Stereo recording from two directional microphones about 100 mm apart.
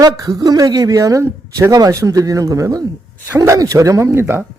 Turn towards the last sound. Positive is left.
turn(degrees=-25)  # may be behind; listen again after turning